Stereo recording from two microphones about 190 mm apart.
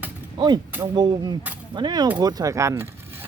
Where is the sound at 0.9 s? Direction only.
25° right (ahead or behind).